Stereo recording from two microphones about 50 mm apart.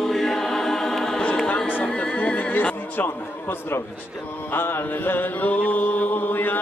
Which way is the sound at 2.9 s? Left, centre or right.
Left.